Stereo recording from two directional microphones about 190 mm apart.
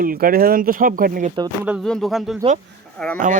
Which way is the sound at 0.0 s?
50° right (ahead or behind).